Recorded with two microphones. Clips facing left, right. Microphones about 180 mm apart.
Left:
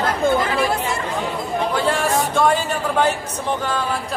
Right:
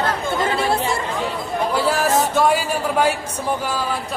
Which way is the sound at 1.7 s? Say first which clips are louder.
Right 2 dB; 5° right (ahead or behind).